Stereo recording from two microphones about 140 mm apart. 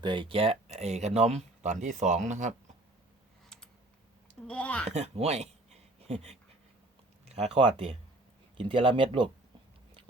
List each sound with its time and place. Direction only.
0.0 s speech: 35° right (ahead or behind); by 2.5 s 60° right (ahead or behind)
4.4 s speech: 10° left (ahead or behind)
4.9 s speech: 50° right (ahead or behind); by 9.3 s 35° right (ahead or behind)